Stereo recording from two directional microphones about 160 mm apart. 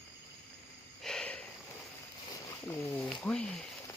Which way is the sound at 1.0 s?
5° left (ahead or behind).